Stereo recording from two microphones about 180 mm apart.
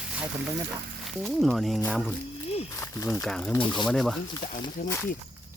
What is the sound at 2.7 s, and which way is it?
Speech, 20° left (ahead or behind).